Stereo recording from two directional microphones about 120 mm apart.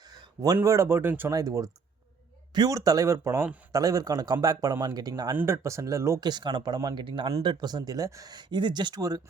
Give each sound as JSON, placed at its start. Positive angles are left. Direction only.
{"t": 0.4, "sound": "speech", "side_deg": -30}
{"t": 1.3, "sound": "speech", "side_deg": -30}
{"t": 6.1, "sound": "speech", "side_deg": -35}